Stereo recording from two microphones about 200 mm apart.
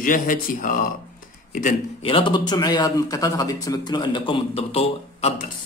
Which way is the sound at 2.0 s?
25° left (ahead or behind).